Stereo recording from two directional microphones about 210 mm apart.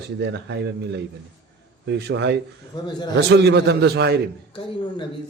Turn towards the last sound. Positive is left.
turn(degrees=20)  # may be behind; listen again after turning